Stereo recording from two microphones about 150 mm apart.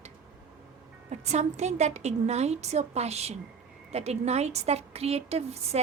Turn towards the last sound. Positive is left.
turn(degrees=-45)  # may be behind; listen again after turning